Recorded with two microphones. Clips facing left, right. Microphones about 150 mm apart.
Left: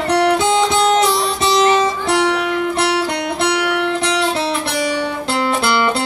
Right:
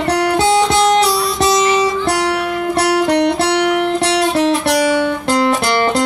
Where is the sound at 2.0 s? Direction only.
35° right (ahead or behind).